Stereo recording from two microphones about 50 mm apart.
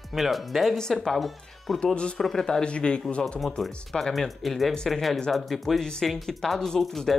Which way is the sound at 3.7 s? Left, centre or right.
Centre.